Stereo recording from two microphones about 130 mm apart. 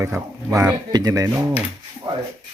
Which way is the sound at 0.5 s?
30° right (ahead or behind).